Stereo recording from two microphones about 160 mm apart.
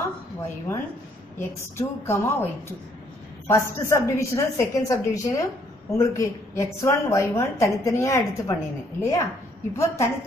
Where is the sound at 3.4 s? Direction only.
15° left (ahead or behind).